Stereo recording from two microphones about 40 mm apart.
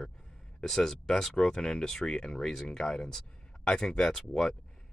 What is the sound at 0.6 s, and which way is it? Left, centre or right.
Speech, centre.